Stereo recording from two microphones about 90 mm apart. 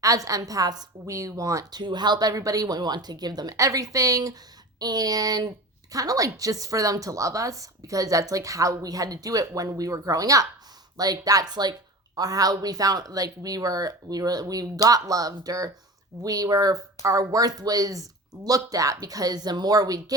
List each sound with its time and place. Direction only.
0.0 s speech: 40° right (ahead or behind)
1.8 s speech: 55° right (ahead or behind)